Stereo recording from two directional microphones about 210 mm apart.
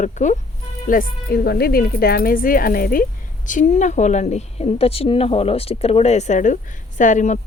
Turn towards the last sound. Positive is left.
turn(degrees=35)  # may be behind; listen again after turning